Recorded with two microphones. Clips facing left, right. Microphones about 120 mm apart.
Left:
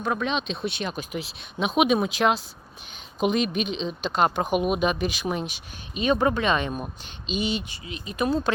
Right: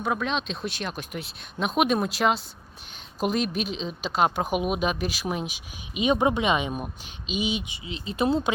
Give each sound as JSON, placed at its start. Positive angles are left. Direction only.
{"t": 0.0, "sound": "speech", "side_deg": 0}
{"t": 5.9, "sound": "speech", "side_deg": -15}
{"t": 7.9, "sound": "speech", "side_deg": -25}